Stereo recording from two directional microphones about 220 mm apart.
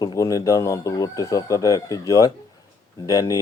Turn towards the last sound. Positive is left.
turn(degrees=15)  # may be behind; listen again after turning